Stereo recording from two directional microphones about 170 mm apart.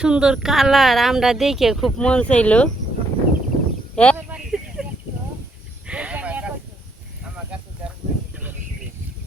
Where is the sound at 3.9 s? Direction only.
5° left (ahead or behind).